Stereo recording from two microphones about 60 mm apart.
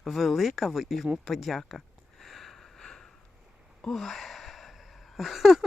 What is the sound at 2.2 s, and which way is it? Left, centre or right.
Sniff, centre.